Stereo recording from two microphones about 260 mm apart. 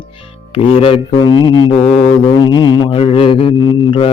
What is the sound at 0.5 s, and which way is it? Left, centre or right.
A man's voice, left.